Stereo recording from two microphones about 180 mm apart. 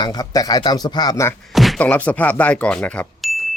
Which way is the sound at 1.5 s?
Centre (ahead or behind).